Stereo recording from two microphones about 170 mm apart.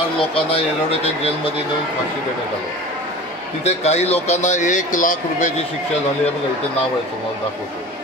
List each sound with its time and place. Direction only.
0.2 s speech: 35° left (ahead or behind)
3.6 s speech: 40° left (ahead or behind)